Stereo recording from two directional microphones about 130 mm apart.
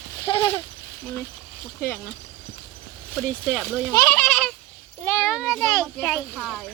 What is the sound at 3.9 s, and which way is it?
Speech, 25° left (ahead or behind).